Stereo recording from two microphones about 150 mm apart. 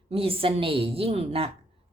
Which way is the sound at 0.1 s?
40° right (ahead or behind).